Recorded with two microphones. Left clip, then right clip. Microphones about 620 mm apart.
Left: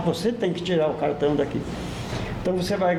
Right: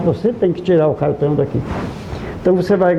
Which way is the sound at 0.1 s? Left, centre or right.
Right.